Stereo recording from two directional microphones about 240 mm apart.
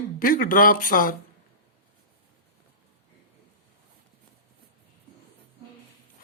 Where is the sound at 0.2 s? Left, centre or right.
Left.